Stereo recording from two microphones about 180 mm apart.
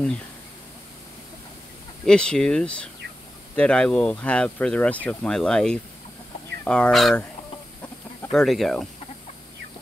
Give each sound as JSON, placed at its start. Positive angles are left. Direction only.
{"t": 2.0, "sound": "speech", "side_deg": 5}
{"t": 8.3, "sound": "speech", "side_deg": 0}